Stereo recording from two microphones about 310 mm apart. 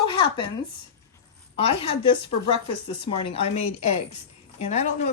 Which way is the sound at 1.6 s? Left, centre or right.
Centre.